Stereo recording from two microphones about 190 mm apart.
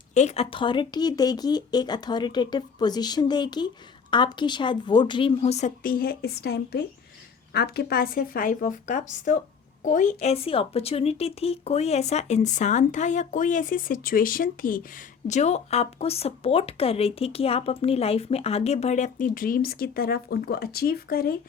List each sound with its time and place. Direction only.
0.1 s speech: 35° left (ahead or behind); by 21.3 s 50° left (ahead or behind)